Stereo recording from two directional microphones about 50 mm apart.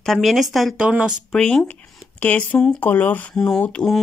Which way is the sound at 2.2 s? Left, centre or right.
Left.